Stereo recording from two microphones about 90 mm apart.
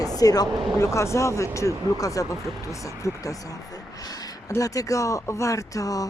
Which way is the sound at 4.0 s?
45° left (ahead or behind).